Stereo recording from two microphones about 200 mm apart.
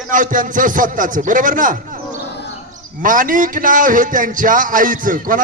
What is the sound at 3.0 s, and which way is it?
A man's voice, 40° right (ahead or behind).